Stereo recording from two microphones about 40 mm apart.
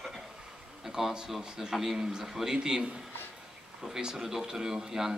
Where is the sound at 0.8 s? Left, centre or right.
Centre.